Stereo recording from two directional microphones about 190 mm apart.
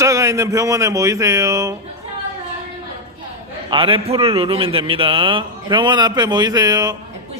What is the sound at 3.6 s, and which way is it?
A man's voice, 25° right (ahead or behind).